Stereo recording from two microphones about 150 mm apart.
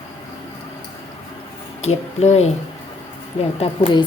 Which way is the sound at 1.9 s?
45° left (ahead or behind).